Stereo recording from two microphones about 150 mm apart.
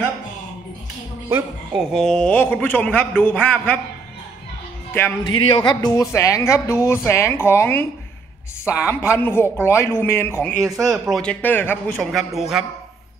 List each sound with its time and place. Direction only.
1.7 s a man's voice: centre (ahead or behind)
5.2 s a woman's voice: 30° left (ahead or behind); by 7.8 s 15° left (ahead or behind)
8.8 s a man's voice: 20° left (ahead or behind)
10.6 s speech: 25° right (ahead or behind)
10.9 s a man's voice: centre (ahead or behind)
12.0 s a man's voice: centre (ahead or behind)